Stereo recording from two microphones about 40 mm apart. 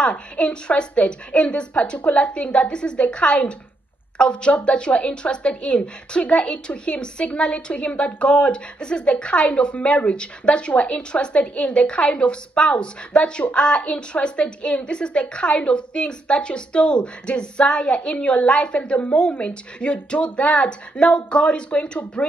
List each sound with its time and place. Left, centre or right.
0.0 s a woman's voice: left